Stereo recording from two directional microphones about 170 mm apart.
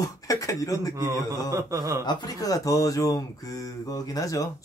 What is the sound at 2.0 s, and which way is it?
Speech, 20° left (ahead or behind).